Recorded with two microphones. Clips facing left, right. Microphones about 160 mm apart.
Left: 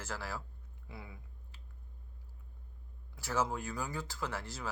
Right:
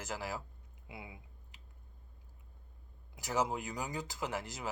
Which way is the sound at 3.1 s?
15° right (ahead or behind).